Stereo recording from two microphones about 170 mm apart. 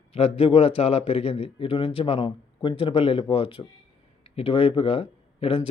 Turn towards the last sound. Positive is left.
turn(degrees=35)  # may be behind; listen again after turning